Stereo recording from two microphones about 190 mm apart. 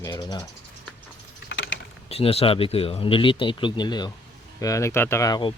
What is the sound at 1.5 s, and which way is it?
Mechanisms, 70° left (ahead or behind).